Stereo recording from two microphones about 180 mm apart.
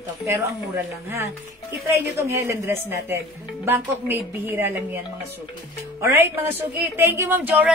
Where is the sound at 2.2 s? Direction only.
15° right (ahead or behind).